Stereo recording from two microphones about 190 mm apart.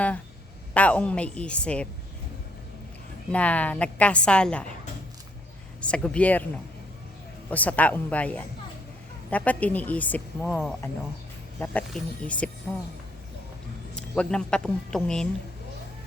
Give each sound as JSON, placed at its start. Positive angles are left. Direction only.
{"t": 0.7, "sound": "a woman's voice", "side_deg": 5}
{"t": 3.3, "sound": "a woman's voice", "side_deg": 10}
{"t": 5.8, "sound": "a woman's voice", "side_deg": 5}
{"t": 13.9, "sound": "speech", "side_deg": 5}